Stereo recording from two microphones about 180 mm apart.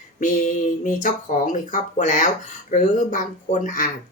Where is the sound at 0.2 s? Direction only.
45° left (ahead or behind).